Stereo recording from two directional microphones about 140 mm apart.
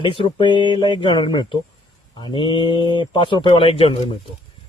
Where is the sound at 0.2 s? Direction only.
35° left (ahead or behind).